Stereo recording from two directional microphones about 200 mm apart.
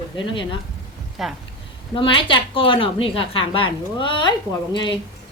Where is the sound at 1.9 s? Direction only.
25° left (ahead or behind).